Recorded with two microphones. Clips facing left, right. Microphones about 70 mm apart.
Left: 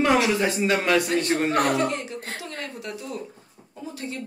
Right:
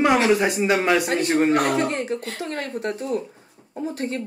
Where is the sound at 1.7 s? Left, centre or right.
Right.